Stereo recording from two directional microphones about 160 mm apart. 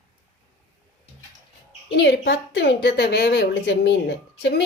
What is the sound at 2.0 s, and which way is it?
A woman's voice, 90° left.